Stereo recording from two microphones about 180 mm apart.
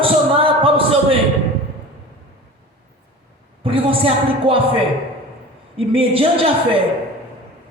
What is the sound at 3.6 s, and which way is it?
Speech, 30° right (ahead or behind).